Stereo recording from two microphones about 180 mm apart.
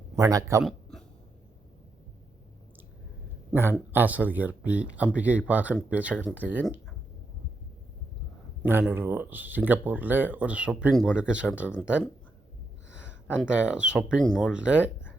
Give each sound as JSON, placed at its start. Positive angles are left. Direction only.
{"t": 0.2, "sound": "speech", "side_deg": -20}
{"t": 0.6, "sound": "a sound", "side_deg": 0}
{"t": 3.5, "sound": "speech", "side_deg": -10}
{"t": 8.6, "sound": "speech", "side_deg": -10}
{"t": 13.1, "sound": "a sound", "side_deg": 15}
{"t": 13.4, "sound": "speech", "side_deg": -5}